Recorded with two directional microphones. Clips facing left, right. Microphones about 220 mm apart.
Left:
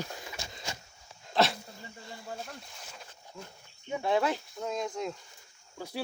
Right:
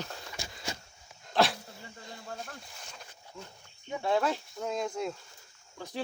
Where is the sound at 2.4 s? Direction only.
Centre (ahead or behind).